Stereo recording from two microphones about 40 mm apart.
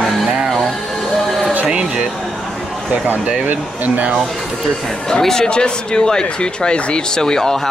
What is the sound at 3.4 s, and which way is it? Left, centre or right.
Speech, right.